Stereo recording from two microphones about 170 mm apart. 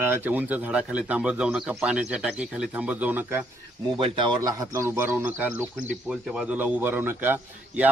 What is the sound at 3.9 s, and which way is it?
A man's voice, 30° right (ahead or behind).